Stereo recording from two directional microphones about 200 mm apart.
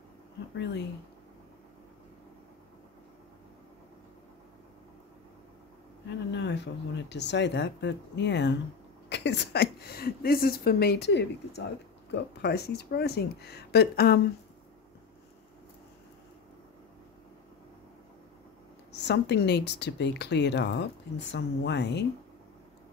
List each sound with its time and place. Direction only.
6.0 s a woman's voice: 60° left (ahead or behind)
18.9 s speech: 60° left (ahead or behind)